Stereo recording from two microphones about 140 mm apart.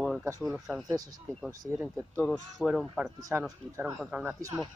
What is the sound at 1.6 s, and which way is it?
Speech, 15° right (ahead or behind).